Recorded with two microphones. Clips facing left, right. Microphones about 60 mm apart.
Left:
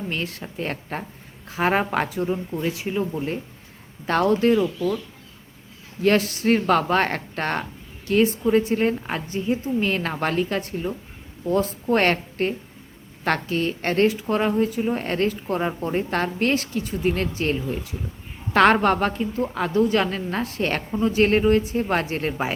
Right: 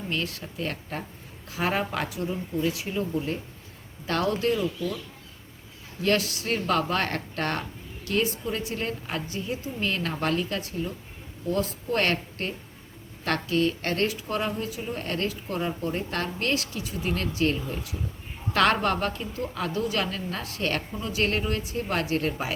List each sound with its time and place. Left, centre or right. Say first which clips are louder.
0.1 s a woman's voice: left 2 dB; left
6.0 s a woman's voice: left 5 dB; left